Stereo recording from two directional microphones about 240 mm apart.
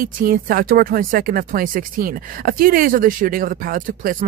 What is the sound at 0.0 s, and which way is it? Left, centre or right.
Speech, right.